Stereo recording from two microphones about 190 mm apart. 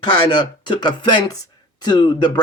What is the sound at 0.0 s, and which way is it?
A man's voice, 25° left (ahead or behind).